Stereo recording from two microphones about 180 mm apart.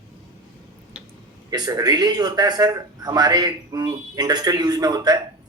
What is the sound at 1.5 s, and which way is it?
Speech, 20° right (ahead or behind).